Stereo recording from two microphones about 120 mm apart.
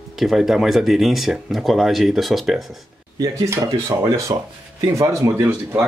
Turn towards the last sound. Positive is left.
turn(degrees=-20)  # may be behind; listen again after turning